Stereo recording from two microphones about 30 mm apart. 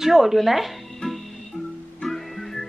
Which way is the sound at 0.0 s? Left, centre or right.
Centre.